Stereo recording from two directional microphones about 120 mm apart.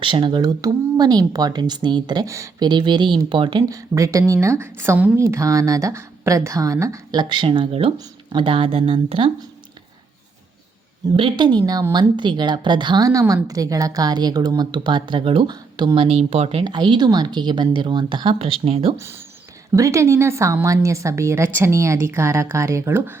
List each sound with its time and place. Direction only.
0.0 s a woman's voice: 45° right (ahead or behind)
2.2 s a woman's voice: 25° right (ahead or behind)
2.6 s a woman's voice: 40° right (ahead or behind)
3.7 s a woman's voice: 30° right (ahead or behind); by 7.9 s 55° right (ahead or behind)
7.9 s speech: 40° right (ahead or behind)
11.2 s a woman's voice: 45° right (ahead or behind)
16.0 s speech: 55° right (ahead or behind)
16.6 s a woman's voice: 40° right (ahead or behind)
18.9 s a woman's voice: 20° right (ahead or behind)